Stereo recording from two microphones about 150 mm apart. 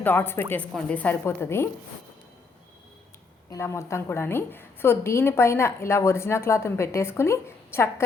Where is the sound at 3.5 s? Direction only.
20° left (ahead or behind).